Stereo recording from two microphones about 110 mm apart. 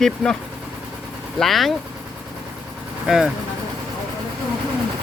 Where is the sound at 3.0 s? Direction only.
5° right (ahead or behind).